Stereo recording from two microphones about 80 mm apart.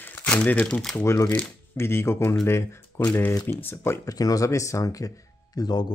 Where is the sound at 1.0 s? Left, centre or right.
Left.